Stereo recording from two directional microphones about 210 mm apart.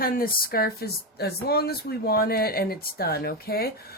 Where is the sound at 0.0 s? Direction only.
45° left (ahead or behind).